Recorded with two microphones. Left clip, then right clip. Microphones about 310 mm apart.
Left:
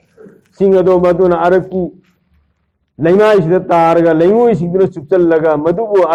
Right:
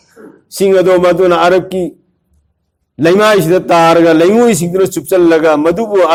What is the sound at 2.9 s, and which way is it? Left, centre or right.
A man's voice, right.